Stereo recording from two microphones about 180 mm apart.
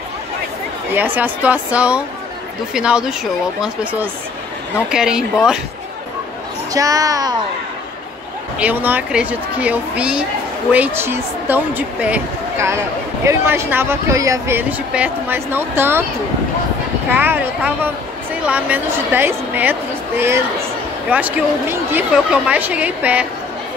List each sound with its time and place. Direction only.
0.9 s speech: 10° right (ahead or behind)
6.7 s speech: 20° right (ahead or behind)
8.5 s speech: 10° right (ahead or behind)
17.1 s speech: 10° right (ahead or behind)